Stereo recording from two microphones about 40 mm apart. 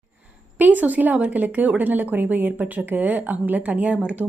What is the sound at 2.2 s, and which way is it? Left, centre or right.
Speech, right.